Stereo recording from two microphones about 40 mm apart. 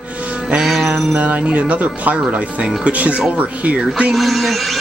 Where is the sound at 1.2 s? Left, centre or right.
Right.